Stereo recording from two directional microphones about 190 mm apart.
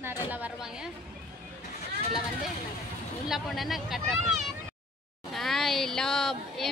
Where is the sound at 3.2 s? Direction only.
Centre (ahead or behind).